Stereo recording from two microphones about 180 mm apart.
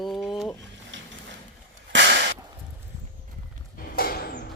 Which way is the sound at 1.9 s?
90° right.